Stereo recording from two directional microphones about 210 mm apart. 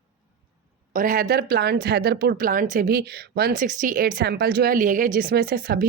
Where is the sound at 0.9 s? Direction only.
40° right (ahead or behind).